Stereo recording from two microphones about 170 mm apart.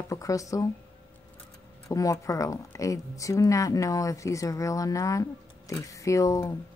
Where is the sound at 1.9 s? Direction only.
20° left (ahead or behind).